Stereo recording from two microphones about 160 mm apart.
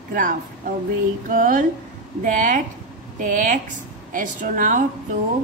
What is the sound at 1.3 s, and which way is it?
A woman's voice, 55° right (ahead or behind).